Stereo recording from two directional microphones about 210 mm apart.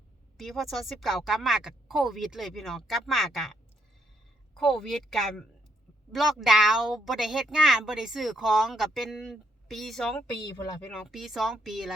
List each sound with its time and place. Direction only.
0.3 s speech: centre (ahead or behind)